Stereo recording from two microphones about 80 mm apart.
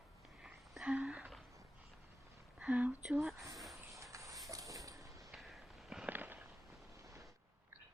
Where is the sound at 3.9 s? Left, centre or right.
Right.